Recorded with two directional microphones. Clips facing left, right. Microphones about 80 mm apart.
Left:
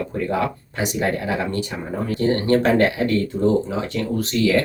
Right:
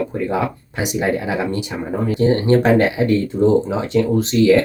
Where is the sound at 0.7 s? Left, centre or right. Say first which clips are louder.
Right 3 dB; centre.